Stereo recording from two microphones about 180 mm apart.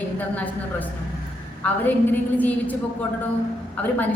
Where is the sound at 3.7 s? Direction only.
10° left (ahead or behind).